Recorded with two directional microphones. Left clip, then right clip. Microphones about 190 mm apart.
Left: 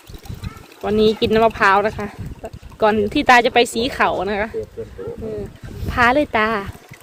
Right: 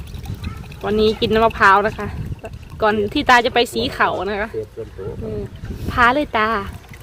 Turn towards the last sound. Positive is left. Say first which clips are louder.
# left 1 dB
turn(degrees=10)  # may be behind; listen again after turning